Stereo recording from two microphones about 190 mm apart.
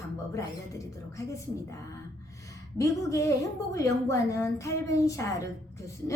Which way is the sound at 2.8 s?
15° left (ahead or behind).